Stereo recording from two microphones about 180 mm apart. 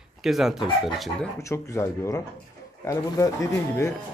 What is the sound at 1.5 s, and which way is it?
Speech, 15° left (ahead or behind).